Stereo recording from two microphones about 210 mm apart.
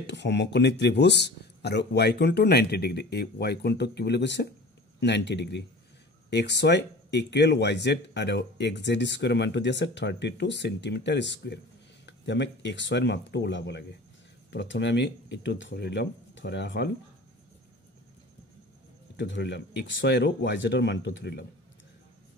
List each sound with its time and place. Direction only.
0.0 s speech: 55° left (ahead or behind)
19.1 s speech: 55° left (ahead or behind)